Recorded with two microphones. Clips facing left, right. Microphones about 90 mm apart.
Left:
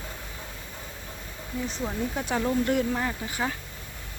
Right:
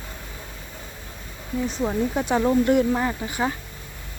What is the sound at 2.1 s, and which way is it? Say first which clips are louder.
Speech: right 6 dB; 30° right (ahead or behind).